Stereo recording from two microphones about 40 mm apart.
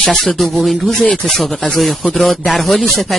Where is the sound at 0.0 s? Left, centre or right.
Centre.